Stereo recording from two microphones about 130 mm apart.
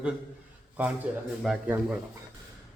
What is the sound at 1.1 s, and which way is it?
Speech, 10° right (ahead or behind).